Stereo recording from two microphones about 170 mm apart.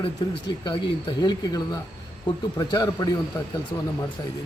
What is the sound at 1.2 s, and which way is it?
Speech, 25° left (ahead or behind).